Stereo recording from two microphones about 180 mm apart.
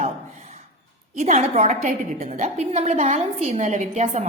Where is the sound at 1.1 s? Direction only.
40° right (ahead or behind).